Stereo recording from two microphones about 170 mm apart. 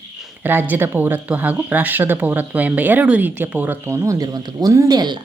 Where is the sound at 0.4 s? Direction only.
10° right (ahead or behind).